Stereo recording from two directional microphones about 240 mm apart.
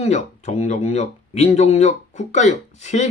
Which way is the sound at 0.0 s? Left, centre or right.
Left.